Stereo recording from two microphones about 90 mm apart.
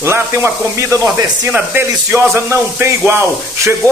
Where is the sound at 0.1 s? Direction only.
30° right (ahead or behind).